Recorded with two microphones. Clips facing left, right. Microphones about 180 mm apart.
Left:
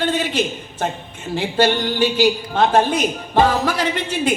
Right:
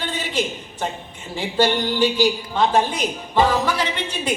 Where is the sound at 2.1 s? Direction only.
60° left (ahead or behind).